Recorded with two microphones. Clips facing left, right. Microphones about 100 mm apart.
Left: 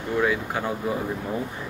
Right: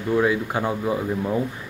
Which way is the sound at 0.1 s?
20° right (ahead or behind).